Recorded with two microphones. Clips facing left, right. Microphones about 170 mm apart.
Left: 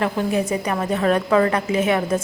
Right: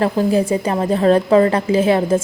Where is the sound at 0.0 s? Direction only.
30° right (ahead or behind).